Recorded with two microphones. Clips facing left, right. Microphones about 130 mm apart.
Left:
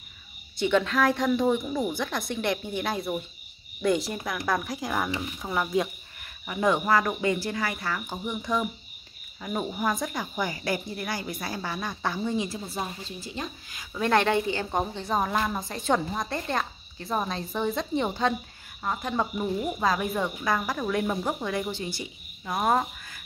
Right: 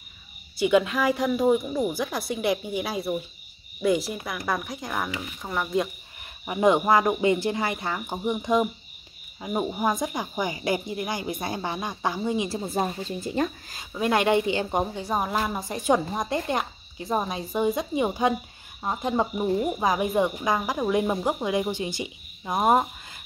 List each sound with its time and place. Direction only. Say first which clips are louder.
0.6 s a woman's voice: right 2 dB; 10° right (ahead or behind)
6.4 s a woman's voice: right 4 dB; 20° right (ahead or behind)
12.6 s speech: right 7 dB; 50° right (ahead or behind)
13.9 s a woman's voice: right 1 dB; 15° right (ahead or behind)